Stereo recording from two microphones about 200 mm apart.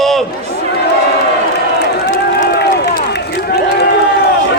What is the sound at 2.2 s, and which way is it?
Run, 50° left (ahead or behind).